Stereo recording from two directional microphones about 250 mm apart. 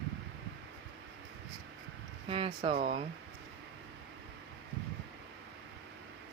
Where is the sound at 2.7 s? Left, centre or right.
Right.